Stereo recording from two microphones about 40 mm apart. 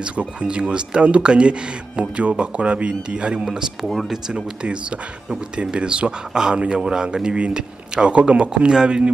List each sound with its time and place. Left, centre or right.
0.0 s speech: right
3.8 s speech: centre
5.6 s speech: right